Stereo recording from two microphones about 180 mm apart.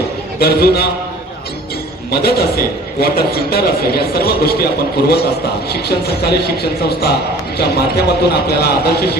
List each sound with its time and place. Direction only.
0.3 s a man's voice: 60° left (ahead or behind)
2.2 s a man's voice: 60° left (ahead or behind)